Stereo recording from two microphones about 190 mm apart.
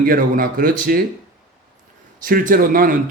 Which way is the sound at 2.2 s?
45° right (ahead or behind).